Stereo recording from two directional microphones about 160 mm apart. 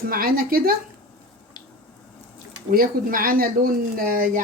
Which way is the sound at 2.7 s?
65° right (ahead or behind).